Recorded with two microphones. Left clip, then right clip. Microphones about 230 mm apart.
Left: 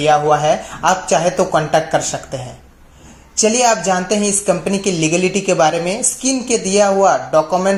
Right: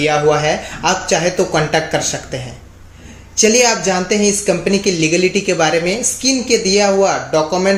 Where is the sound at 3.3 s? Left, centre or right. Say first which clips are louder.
Right 1 dB; left.